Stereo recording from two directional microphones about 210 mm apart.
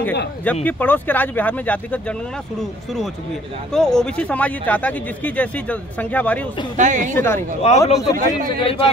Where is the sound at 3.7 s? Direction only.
5° left (ahead or behind).